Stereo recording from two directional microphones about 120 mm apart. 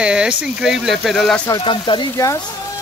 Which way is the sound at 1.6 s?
40° left (ahead or behind).